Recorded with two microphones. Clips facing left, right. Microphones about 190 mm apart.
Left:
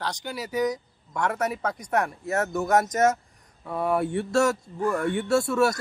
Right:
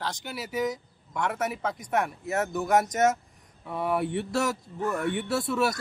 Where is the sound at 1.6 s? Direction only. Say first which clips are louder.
Left 2 dB; 20° right (ahead or behind).